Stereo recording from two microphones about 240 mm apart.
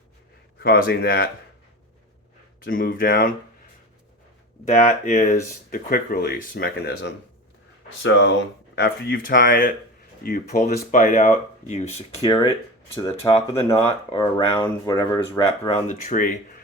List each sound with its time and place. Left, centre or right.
0.6 s speech: left
2.6 s speech: left
4.6 s speech: left